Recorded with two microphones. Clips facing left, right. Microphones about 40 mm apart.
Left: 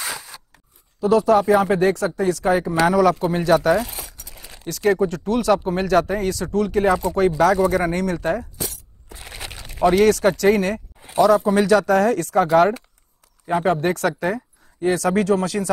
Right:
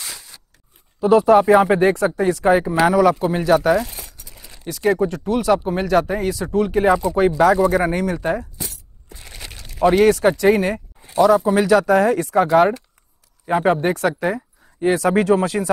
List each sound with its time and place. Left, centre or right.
1.0 s speech: centre
4.6 s speech: centre
9.1 s crushing: centre
9.8 s speech: centre